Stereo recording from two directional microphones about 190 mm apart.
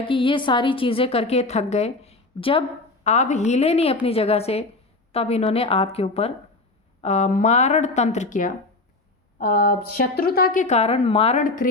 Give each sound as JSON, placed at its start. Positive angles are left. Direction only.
{"t": 0.0, "sound": "a woman's voice", "side_deg": 25}